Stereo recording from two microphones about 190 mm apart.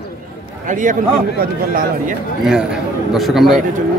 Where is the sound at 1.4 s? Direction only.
50° right (ahead or behind).